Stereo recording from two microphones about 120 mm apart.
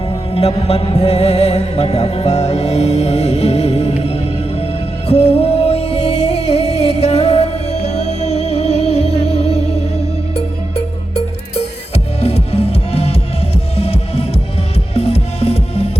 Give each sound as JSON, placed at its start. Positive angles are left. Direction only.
{"t": 0.7, "sound": "music", "side_deg": 55}